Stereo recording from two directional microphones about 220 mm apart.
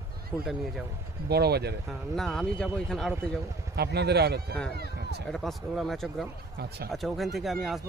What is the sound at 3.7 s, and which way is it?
Speech, 50° right (ahead or behind).